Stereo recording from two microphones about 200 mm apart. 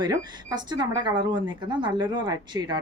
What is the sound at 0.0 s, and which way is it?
Speech, 20° right (ahead or behind).